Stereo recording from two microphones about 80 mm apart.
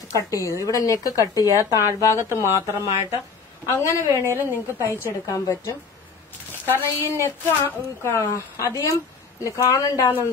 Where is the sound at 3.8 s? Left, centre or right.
Left.